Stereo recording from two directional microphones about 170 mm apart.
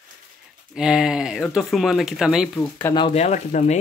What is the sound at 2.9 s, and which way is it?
Speech, 35° left (ahead or behind).